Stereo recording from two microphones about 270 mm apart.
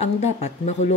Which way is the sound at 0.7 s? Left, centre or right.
Left.